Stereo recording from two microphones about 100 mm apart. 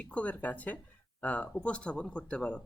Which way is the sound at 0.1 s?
15° left (ahead or behind).